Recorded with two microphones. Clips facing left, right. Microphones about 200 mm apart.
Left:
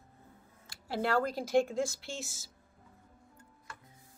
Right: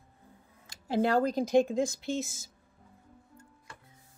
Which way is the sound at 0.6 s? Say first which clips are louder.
Right 6 dB; 20° right (ahead or behind).